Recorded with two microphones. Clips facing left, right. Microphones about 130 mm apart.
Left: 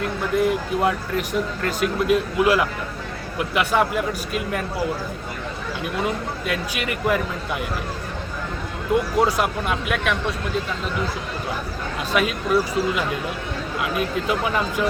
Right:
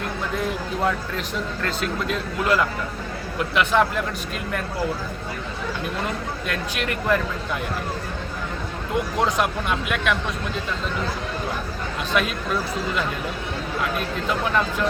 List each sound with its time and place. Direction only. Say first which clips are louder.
0.3 s speech: left 7 dB; 5° left (ahead or behind)
5.8 s speech: left 5 dB; 5° left (ahead or behind)
9.1 s speech: left 2 dB; 5° left (ahead or behind)
12.1 s speech: left 4 dB; 5° left (ahead or behind)